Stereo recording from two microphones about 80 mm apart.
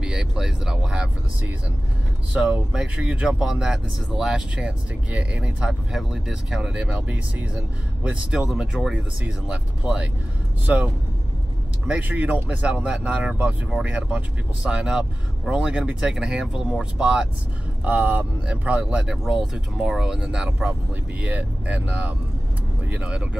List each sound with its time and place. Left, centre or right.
0.0 s speech: centre
2.3 s speech: centre
11.9 s speech: centre